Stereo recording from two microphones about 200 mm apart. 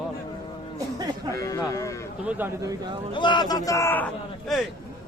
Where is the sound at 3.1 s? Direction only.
25° left (ahead or behind).